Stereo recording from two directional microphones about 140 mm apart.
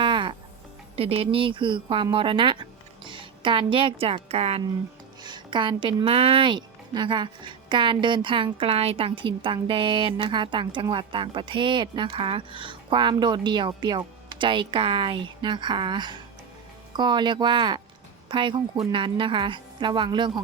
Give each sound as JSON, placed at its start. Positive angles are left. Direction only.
{"t": 0.0, "sound": "music", "side_deg": -35}
{"t": 0.9, "sound": "speech", "side_deg": -45}
{"t": 5.2, "sound": "a woman's voice", "side_deg": -35}